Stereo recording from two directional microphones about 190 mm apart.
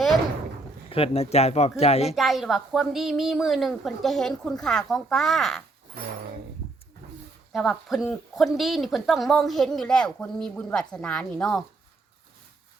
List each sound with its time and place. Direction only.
0.9 s speech: 30° left (ahead or behind)
2.1 s speech: centre (ahead or behind)
7.5 s speech: centre (ahead or behind)